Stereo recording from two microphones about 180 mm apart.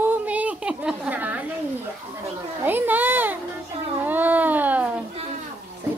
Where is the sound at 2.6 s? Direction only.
10° right (ahead or behind).